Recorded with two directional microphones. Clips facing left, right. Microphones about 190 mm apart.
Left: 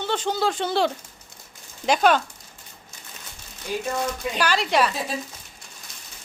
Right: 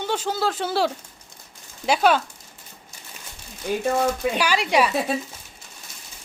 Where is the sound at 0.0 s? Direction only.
10° right (ahead or behind).